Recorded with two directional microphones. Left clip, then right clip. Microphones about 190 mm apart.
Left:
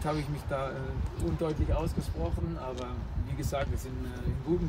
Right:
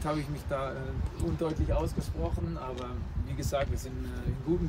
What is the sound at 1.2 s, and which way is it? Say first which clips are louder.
Speech: left 1 dB; 30° right (ahead or behind).